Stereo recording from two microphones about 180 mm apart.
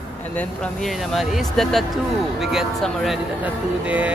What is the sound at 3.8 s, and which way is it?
Music, 5° right (ahead or behind).